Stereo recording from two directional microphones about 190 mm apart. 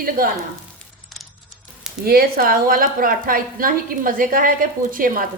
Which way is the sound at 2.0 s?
50° right (ahead or behind).